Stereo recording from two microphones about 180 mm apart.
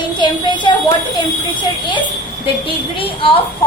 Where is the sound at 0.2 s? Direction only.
25° left (ahead or behind).